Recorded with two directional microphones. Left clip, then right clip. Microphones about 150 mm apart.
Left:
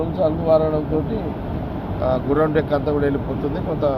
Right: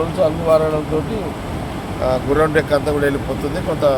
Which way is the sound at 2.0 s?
30° right (ahead or behind).